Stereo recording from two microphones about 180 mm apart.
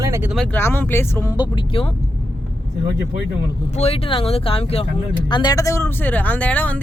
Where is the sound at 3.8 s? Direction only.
35° left (ahead or behind); by 6.7 s 10° left (ahead or behind).